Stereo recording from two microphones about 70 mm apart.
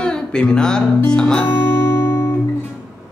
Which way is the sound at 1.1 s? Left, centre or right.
Centre.